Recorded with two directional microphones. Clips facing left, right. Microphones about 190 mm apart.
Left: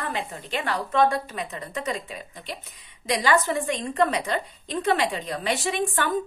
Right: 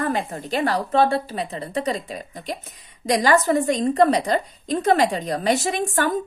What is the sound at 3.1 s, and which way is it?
A woman's voice, 45° right (ahead or behind).